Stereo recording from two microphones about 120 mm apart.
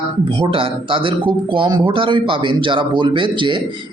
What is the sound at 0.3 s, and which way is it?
Speech, 45° right (ahead or behind).